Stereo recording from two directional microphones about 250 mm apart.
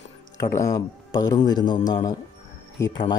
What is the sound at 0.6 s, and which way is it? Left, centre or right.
Speech, centre.